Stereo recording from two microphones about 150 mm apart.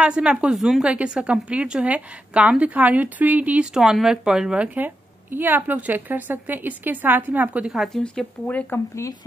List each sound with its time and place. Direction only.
0.0 s a woman's voice: 5° right (ahead or behind); by 9.1 s 15° left (ahead or behind)